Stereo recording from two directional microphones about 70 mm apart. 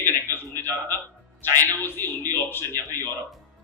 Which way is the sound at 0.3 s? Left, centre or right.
Left.